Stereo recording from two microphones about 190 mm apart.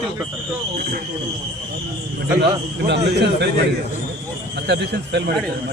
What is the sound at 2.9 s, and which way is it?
Speech, 65° right (ahead or behind).